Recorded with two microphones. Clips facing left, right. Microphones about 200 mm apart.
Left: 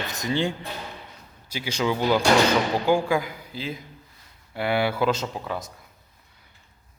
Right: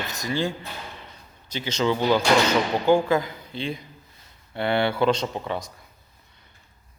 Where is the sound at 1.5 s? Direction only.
10° left (ahead or behind).